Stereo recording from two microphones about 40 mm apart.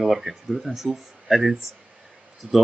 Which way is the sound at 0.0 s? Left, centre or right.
Centre.